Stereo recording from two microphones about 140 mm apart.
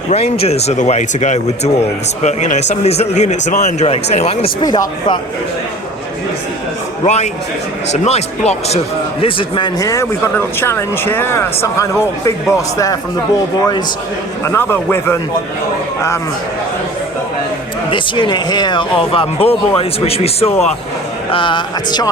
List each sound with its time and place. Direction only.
0.1 s speech: 50° left (ahead or behind)
4.6 s speech: 30° left (ahead or behind)
7.0 s speech: 55° left (ahead or behind)
9.2 s speech: 35° left (ahead or behind); by 15.2 s 15° left (ahead or behind)
17.9 s speech: 35° left (ahead or behind)